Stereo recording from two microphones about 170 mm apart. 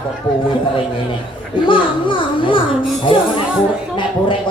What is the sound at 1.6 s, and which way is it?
A child's voice, 30° left (ahead or behind).